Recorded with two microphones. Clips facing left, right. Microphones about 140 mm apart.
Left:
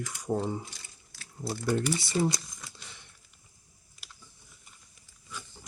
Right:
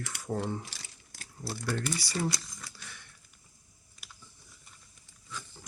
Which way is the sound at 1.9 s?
20° left (ahead or behind).